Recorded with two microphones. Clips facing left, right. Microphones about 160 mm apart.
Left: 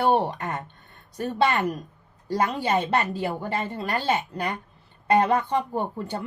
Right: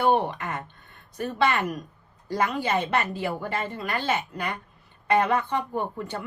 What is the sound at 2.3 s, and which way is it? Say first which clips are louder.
Speech: left 2 dB; 35° left (ahead or behind).